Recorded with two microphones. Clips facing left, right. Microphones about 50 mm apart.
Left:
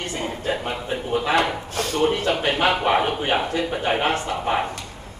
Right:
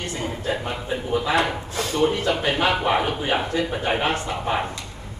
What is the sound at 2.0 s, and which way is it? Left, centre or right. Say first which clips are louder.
A man's voice: even; left.